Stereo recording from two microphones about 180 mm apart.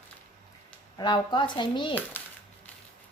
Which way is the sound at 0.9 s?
25° left (ahead or behind).